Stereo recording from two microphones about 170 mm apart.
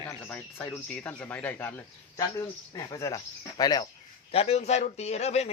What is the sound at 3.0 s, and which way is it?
Speech, 20° left (ahead or behind).